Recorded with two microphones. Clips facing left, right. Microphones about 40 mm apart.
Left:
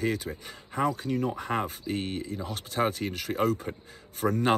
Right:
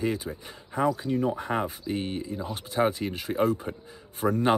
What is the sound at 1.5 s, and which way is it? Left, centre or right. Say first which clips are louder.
Speech: left 1 dB; centre.